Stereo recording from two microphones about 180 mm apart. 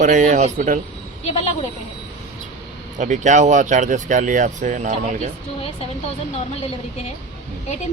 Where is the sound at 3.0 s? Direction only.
40° right (ahead or behind).